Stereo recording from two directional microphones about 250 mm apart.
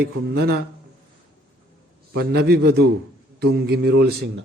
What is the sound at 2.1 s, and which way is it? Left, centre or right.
A man's voice, right.